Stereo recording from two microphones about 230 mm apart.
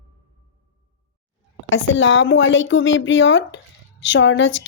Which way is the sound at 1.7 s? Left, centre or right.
Left.